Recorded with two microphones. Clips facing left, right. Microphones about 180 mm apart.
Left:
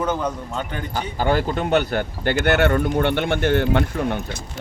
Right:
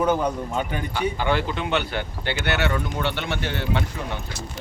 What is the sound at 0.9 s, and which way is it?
Speech, 40° left (ahead or behind).